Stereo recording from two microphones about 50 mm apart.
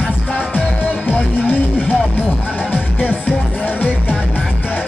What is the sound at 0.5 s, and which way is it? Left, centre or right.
Music, left.